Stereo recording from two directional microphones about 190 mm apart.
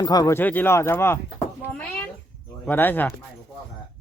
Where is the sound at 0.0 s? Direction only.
20° left (ahead or behind).